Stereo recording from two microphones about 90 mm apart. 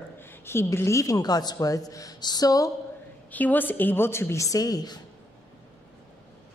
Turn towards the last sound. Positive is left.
turn(degrees=45)  # may be behind; listen again after turning